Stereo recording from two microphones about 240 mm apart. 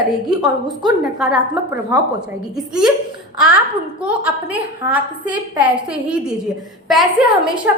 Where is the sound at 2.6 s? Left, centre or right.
Centre.